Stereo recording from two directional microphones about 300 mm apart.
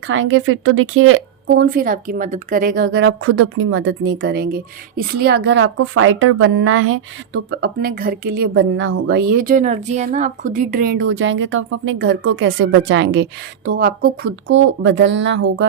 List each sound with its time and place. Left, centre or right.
0.1 s a woman's voice: right